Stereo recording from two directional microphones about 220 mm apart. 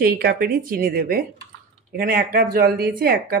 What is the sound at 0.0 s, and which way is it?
A woman's voice, 45° right (ahead or behind).